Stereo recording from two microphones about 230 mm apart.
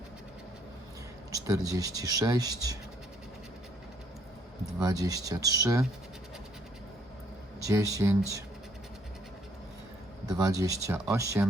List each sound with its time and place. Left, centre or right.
1.3 s speech: centre
4.8 s speech: centre
7.6 s speech: centre
10.3 s speech: centre